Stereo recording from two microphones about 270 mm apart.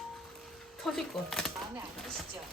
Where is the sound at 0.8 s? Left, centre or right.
Centre.